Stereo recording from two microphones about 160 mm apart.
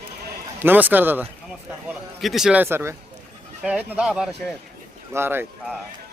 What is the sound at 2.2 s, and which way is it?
Speech, centre (ahead or behind).